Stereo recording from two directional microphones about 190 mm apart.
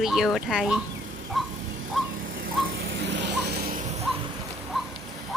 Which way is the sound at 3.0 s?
70° right (ahead or behind).